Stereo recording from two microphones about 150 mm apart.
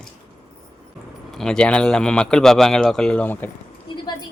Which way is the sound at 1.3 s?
5° left (ahead or behind).